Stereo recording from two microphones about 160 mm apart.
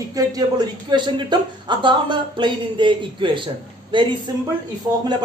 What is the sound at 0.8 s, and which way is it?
Speech, 30° right (ahead or behind).